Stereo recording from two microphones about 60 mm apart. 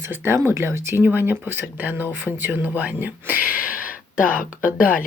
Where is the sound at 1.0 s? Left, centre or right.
Right.